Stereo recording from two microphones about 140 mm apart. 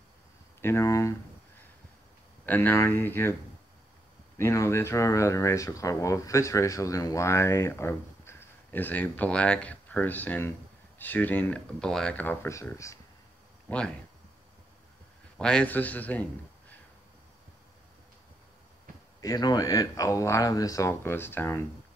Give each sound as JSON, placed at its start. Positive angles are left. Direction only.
{"t": 0.6, "sound": "speech", "side_deg": 20}
{"t": 2.4, "sound": "speech", "side_deg": 15}
{"t": 4.4, "sound": "speech", "side_deg": 20}
{"t": 13.7, "sound": "speech", "side_deg": 5}
{"t": 15.3, "sound": "a man's voice", "side_deg": 5}
{"t": 19.2, "sound": "speech", "side_deg": 30}